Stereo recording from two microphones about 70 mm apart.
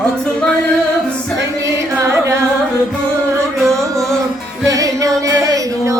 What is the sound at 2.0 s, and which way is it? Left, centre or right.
Music, right.